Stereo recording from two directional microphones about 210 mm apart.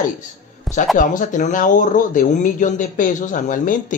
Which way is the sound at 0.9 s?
40° left (ahead or behind).